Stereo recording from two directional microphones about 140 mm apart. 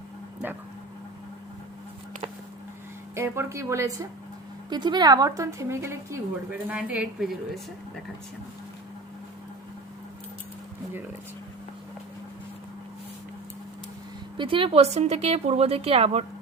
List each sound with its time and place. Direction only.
0.4 s a sound: 15° right (ahead or behind)
3.2 s a woman's voice: 20° right (ahead or behind); by 7.6 s centre (ahead or behind)
14.3 s a woman's voice: 40° right (ahead or behind)